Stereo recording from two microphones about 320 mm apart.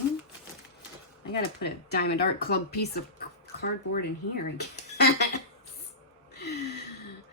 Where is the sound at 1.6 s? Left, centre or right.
Left.